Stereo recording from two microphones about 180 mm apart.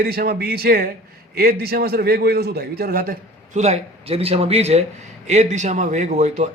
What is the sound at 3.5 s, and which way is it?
Speech, 40° right (ahead or behind).